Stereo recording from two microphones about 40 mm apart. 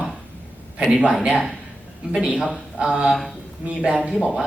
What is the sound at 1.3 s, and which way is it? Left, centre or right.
A man's voice, centre.